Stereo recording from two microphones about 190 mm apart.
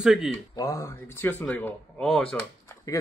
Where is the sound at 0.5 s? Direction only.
20° left (ahead or behind); by 2.5 s 5° left (ahead or behind).